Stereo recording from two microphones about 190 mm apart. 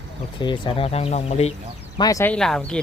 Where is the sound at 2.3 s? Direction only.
5° left (ahead or behind).